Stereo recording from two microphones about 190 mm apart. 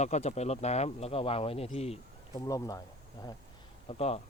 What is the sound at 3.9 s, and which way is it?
Speech, 30° left (ahead or behind).